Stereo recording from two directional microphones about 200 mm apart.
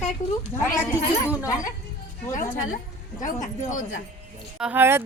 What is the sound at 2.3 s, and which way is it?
Speech, 40° left (ahead or behind).